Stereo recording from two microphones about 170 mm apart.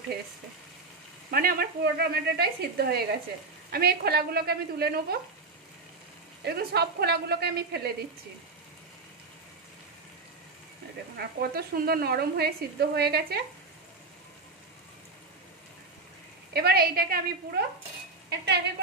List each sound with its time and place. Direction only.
1.3 s a woman's voice: 60° right (ahead or behind)
6.4 s a woman's voice: 70° right (ahead or behind)
11.1 s a woman's voice: 65° right (ahead or behind)
16.5 s a woman's voice: 65° right (ahead or behind)
18.3 s speech: 85° right